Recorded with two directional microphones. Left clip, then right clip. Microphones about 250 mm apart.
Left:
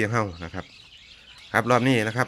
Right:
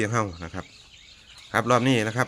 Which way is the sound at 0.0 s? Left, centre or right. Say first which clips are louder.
Left 1 dB; centre.